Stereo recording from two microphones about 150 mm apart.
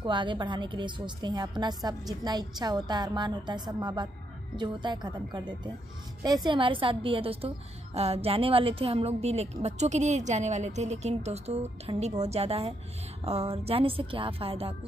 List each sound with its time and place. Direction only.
0.0 s a woman's voice: 30° right (ahead or behind)